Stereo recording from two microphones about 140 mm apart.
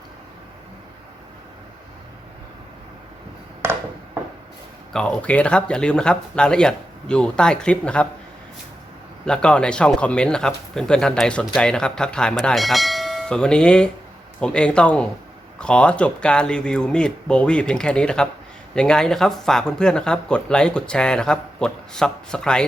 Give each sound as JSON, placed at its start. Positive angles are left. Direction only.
{"t": 3.6, "sound": "a sound", "side_deg": -15}
{"t": 4.9, "sound": "speech", "side_deg": 5}
{"t": 9.2, "sound": "speech", "side_deg": 5}